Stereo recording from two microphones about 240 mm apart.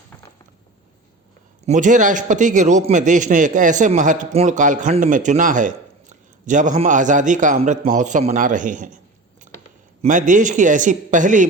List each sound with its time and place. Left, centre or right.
1.6 s a man's voice: right
10.0 s a man's voice: right